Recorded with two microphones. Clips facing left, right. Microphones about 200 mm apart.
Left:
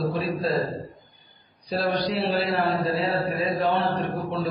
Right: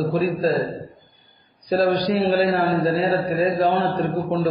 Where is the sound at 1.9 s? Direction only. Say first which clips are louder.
Right 5 dB; centre (ahead or behind).